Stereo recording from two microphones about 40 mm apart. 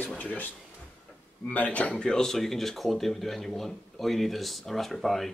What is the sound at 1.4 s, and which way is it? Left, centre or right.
Speech, left.